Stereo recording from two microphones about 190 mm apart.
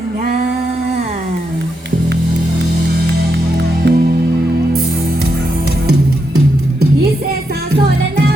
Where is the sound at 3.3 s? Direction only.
65° right (ahead or behind).